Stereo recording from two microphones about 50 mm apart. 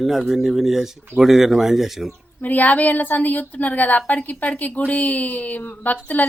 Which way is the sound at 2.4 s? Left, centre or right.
Left.